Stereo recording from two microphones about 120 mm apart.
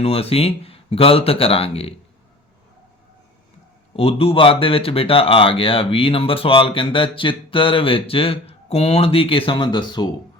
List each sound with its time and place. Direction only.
0.0 s speech: 55° left (ahead or behind)
3.9 s speech: 55° left (ahead or behind); by 10.1 s 40° left (ahead or behind)